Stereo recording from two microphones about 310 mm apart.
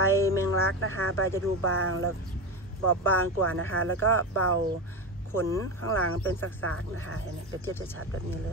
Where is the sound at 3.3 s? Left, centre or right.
Right.